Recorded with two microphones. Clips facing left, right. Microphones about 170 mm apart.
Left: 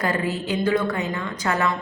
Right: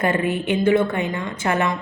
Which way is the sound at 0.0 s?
25° right (ahead or behind).